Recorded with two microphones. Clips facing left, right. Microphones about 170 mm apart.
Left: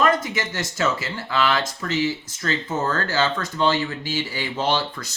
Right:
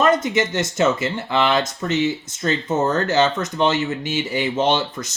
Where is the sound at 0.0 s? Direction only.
25° right (ahead or behind).